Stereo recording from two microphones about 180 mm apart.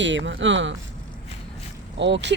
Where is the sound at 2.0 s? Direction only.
75° right (ahead or behind).